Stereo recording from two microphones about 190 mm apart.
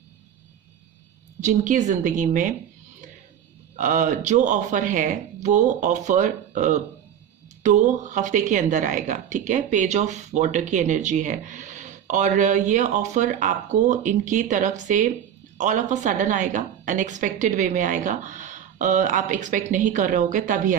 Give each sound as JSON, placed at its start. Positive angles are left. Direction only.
{"t": 1.4, "sound": "a woman's voice", "side_deg": -40}
{"t": 3.8, "sound": "a woman's voice", "side_deg": -40}